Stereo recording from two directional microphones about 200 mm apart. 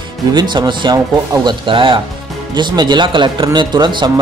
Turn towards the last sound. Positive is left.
turn(degrees=-20)  # may be behind; listen again after turning